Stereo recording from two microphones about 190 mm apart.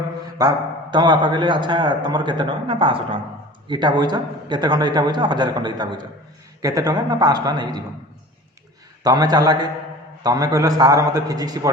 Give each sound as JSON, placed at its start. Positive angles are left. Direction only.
{"t": 0.3, "sound": "a man's voice", "side_deg": -20}
{"t": 9.0, "sound": "a man's voice", "side_deg": -20}